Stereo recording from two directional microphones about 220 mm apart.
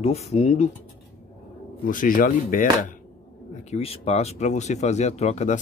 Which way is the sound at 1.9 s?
40° left (ahead or behind).